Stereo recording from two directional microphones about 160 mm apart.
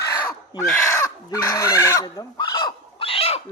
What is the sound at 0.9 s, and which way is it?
Chicken, 20° left (ahead or behind).